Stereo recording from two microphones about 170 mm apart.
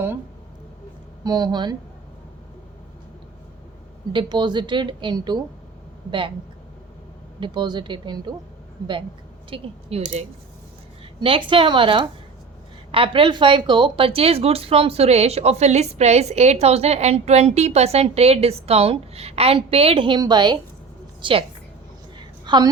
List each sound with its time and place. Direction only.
1.2 s a woman's voice: 25° right (ahead or behind)
4.1 s a woman's voice: 25° right (ahead or behind)
7.3 s a woman's voice: 25° right (ahead or behind)
9.5 s a woman's voice: 35° right (ahead or behind)
22.2 s a sound: 25° right (ahead or behind)